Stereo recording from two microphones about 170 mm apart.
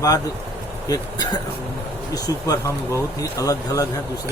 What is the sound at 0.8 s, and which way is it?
Speech, 25° left (ahead or behind).